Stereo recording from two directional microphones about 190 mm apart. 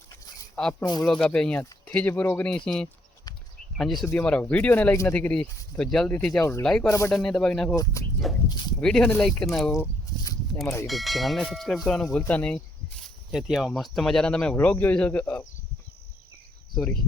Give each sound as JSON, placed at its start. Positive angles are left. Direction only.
{"t": 0.5, "sound": "speech", "side_deg": 5}
{"t": 6.8, "sound": "speech", "side_deg": 15}
{"t": 7.1, "sound": "speech", "side_deg": 5}
{"t": 8.4, "sound": "speech", "side_deg": 20}
{"t": 8.8, "sound": "speech", "side_deg": 5}
{"t": 9.7, "sound": "a sound", "side_deg": 15}
{"t": 10.8, "sound": "speech", "side_deg": 0}
{"t": 16.7, "sound": "speech", "side_deg": 5}